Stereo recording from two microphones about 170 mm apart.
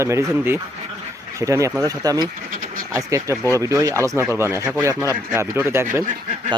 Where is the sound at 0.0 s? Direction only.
15° right (ahead or behind).